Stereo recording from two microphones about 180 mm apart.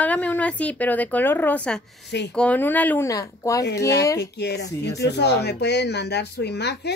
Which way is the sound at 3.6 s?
65° left (ahead or behind).